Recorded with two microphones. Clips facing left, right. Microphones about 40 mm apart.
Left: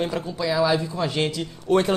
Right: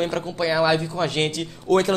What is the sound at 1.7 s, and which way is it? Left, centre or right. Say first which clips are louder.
Speech: right 1 dB; right.